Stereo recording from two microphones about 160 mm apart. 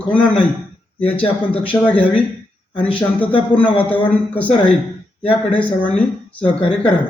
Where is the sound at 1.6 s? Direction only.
10° left (ahead or behind).